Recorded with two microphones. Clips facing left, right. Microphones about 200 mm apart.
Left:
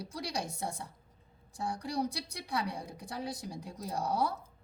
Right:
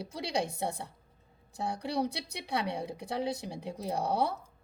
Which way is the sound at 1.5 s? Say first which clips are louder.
Right 2 dB; 25° right (ahead or behind).